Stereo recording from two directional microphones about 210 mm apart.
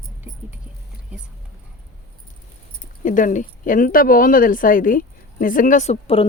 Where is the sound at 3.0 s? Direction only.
40° left (ahead or behind).